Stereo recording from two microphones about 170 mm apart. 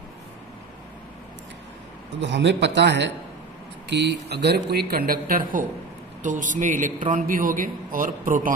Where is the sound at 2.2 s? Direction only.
90° right.